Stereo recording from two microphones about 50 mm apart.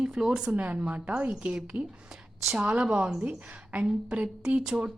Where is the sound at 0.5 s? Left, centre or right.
Right.